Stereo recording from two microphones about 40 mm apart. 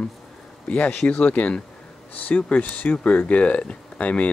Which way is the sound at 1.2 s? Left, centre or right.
Left.